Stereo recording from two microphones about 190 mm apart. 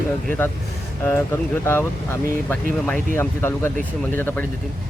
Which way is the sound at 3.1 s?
10° left (ahead or behind).